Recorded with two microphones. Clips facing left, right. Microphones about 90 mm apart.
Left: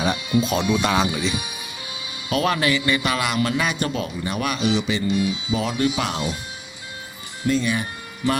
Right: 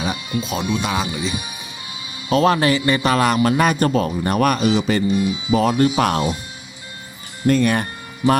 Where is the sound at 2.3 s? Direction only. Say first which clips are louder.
Right 5 dB; 35° right (ahead or behind).